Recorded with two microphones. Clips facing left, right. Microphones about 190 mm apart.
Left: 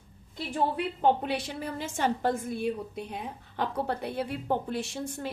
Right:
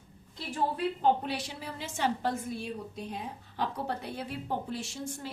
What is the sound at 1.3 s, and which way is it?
A woman's voice, 55° left (ahead or behind).